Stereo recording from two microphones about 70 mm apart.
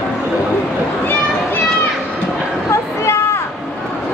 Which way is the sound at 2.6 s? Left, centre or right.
Left.